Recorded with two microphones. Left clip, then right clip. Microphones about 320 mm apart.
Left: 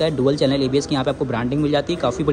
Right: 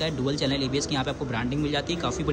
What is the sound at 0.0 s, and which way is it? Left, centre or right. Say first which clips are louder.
A man's voice: left 9 dB; centre.